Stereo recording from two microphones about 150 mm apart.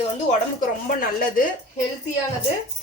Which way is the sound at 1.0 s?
70° left (ahead or behind).